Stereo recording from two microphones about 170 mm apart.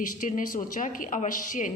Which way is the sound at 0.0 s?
50° left (ahead or behind).